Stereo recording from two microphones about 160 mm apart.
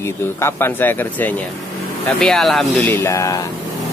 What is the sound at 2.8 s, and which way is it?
Speech, 15° left (ahead or behind).